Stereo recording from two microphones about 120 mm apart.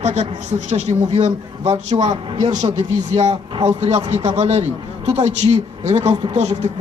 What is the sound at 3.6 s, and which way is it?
A man's voice, 65° right (ahead or behind).